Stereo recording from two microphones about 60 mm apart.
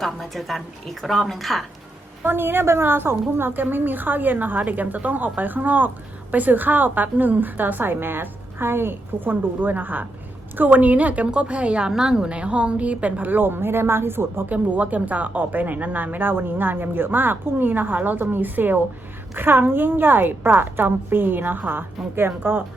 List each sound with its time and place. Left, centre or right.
0.0 s a woman's voice: centre
2.2 s a woman's voice: right
14.5 s a woman's voice: right